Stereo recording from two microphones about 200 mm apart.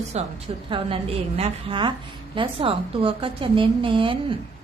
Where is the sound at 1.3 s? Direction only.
30° right (ahead or behind).